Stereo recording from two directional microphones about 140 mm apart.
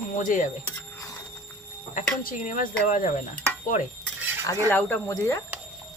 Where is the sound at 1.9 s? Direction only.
70° left (ahead or behind).